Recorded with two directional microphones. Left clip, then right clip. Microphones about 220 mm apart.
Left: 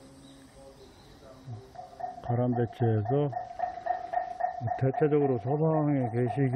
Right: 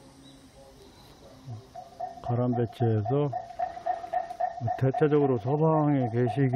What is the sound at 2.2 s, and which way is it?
Speech, 10° right (ahead or behind).